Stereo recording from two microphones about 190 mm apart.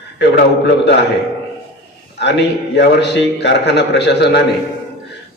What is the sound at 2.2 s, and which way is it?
A man's voice, 65° left (ahead or behind).